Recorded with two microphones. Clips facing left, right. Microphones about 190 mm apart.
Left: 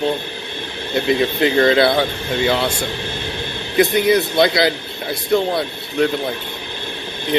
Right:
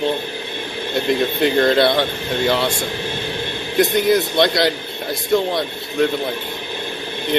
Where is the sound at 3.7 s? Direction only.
Centre (ahead or behind).